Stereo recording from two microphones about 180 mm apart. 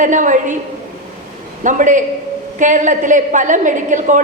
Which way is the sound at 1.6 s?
45° right (ahead or behind).